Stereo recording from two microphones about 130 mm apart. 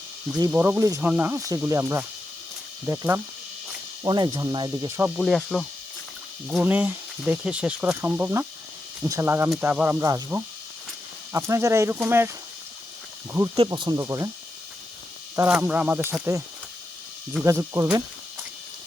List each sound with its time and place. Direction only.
0.5 s speech: 20° right (ahead or behind)
1.0 s speech: 10° right (ahead or behind)
4.0 s speech: 35° right (ahead or behind)
5.1 s insect: centre (ahead or behind)
6.6 s speech: 15° right (ahead or behind)
10.0 s speech: 25° right (ahead or behind)
13.7 s speech: 30° right (ahead or behind)
15.4 s speech: 10° right (ahead or behind)
17.4 s speech: 25° right (ahead or behind)